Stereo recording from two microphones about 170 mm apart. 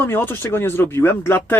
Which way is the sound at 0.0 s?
15° left (ahead or behind).